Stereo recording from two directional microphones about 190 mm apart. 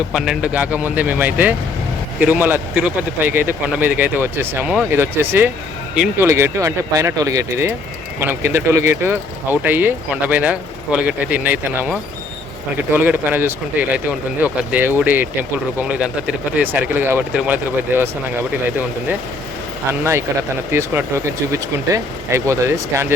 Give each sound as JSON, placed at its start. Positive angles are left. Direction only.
{"t": 0.1, "sound": "speech", "side_deg": -5}
{"t": 19.9, "sound": "speech", "side_deg": -15}